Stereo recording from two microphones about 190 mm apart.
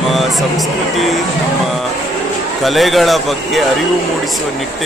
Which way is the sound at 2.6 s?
Centre (ahead or behind).